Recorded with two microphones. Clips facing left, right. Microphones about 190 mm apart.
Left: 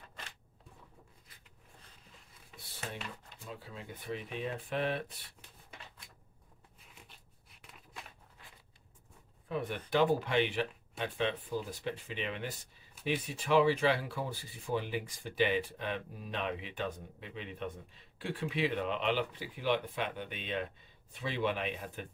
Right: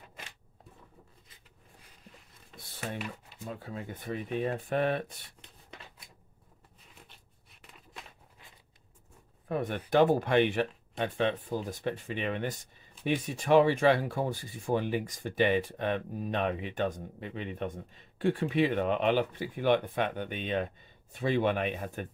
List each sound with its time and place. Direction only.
3.4 s speech: 50° right (ahead or behind)
9.5 s speech: 50° right (ahead or behind)